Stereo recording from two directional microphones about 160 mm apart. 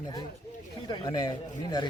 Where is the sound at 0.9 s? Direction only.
25° left (ahead or behind).